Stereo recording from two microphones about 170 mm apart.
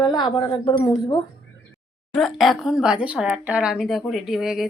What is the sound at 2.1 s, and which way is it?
Speech, centre (ahead or behind).